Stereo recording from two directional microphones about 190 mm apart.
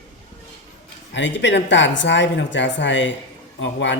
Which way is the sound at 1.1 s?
70° left (ahead or behind).